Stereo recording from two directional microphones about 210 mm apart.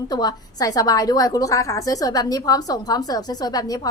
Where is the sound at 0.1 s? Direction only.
20° left (ahead or behind).